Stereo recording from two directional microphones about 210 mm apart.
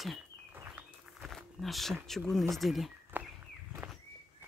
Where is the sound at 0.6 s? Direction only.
10° right (ahead or behind).